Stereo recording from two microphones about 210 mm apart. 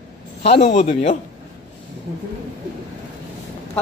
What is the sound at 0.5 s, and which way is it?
Speech, 30° left (ahead or behind).